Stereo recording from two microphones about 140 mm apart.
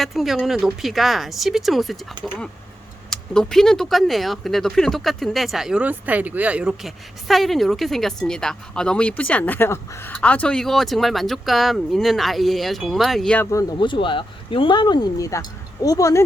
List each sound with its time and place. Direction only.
0.0 s speech: centre (ahead or behind)
3.1 s speech: 5° left (ahead or behind)
13.4 s speech: 20° left (ahead or behind)
13.7 s speech: 35° left (ahead or behind)